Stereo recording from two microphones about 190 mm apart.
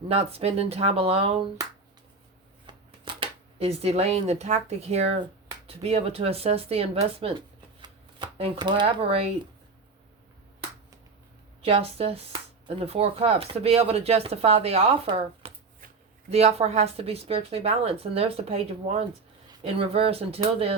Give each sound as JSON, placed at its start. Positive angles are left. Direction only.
{"t": 0.1, "sound": "speech", "side_deg": -30}
{"t": 2.6, "sound": "speech", "side_deg": -25}
{"t": 11.6, "sound": "speech", "side_deg": -30}